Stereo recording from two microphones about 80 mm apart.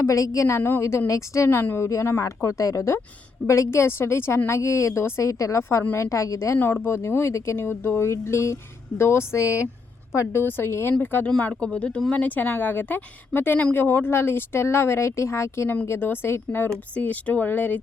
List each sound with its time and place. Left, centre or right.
0.0 s speech: left
1.5 s speech: left
6.6 s speech: left
16.9 s speech: centre